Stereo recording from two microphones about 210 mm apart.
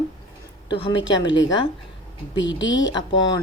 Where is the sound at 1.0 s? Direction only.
60° left (ahead or behind).